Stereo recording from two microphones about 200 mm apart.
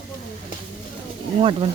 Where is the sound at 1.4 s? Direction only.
25° right (ahead or behind).